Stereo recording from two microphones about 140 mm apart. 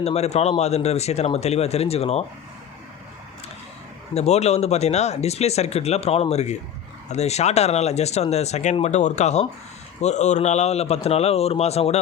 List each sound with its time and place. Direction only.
0.0 s speech: 50° left (ahead or behind)
4.1 s speech: 50° left (ahead or behind)